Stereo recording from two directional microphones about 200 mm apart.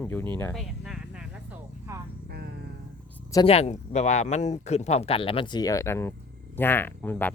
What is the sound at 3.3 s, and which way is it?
Speech, 25° left (ahead or behind).